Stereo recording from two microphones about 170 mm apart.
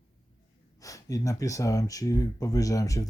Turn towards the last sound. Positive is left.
turn(degrees=20)  # may be behind; listen again after turning